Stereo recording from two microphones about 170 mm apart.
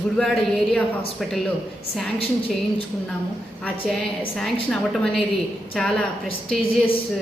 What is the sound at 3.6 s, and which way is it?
A woman's voice, 5° left (ahead or behind).